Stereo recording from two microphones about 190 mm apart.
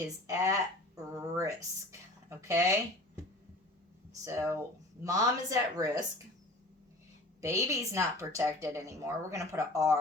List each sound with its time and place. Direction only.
0.3 s speech: 15° right (ahead or behind)
4.2 s a woman's voice: 15° right (ahead or behind)
7.4 s a woman's voice: 15° right (ahead or behind)